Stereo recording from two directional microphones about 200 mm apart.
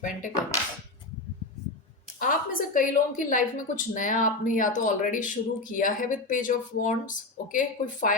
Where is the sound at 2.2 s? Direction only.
45° left (ahead or behind).